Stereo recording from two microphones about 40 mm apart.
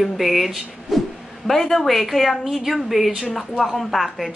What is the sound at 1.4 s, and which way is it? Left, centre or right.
A woman's voice, centre.